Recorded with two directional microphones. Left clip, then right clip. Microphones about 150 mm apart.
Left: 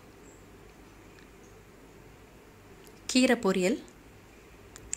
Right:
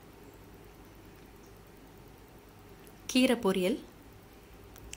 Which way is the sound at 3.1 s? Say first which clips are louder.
Left 2 dB; 10° left (ahead or behind).